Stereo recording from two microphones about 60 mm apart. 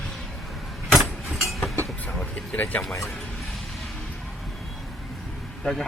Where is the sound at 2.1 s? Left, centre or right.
Left.